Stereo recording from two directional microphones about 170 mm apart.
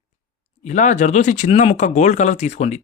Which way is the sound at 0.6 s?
45° left (ahead or behind).